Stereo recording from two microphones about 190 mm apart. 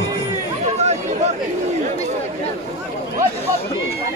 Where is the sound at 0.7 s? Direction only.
35° right (ahead or behind).